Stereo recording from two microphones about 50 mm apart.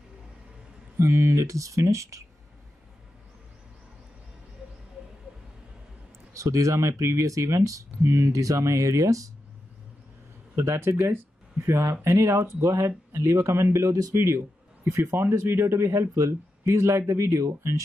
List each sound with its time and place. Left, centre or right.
0.9 s speech: right
6.3 s speech: right
10.9 s speech: right
11.1 s speech: right